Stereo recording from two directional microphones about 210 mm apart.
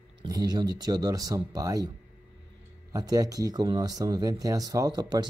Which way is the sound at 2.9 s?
15° right (ahead or behind).